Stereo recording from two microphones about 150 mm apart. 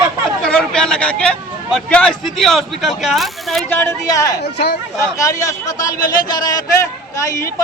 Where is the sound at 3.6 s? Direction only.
15° left (ahead or behind).